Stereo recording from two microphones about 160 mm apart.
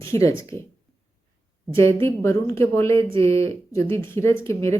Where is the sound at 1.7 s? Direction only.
15° left (ahead or behind).